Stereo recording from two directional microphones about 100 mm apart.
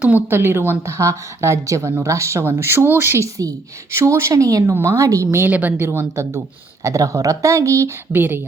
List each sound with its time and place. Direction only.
0.0 s a woman's voice: 20° right (ahead or behind)